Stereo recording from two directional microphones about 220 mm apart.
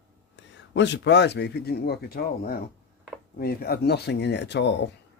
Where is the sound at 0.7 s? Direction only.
50° left (ahead or behind).